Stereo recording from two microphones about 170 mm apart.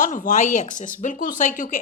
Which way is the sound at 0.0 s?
50° left (ahead or behind).